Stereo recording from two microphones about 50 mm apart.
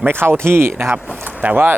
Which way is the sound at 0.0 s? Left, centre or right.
Right.